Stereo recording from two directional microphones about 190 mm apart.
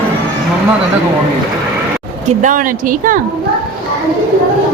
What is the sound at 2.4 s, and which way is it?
Speech, 45° right (ahead or behind).